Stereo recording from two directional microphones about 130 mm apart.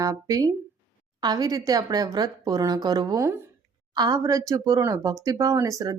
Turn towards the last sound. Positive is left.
turn(degrees=-25)  # may be behind; listen again after turning